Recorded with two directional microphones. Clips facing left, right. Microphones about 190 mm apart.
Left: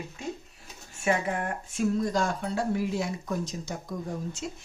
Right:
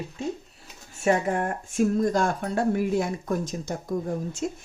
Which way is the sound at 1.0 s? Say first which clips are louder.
Right 4 dB; 40° right (ahead or behind).